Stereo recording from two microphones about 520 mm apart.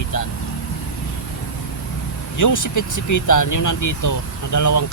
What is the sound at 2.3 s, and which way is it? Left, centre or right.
Speech, left.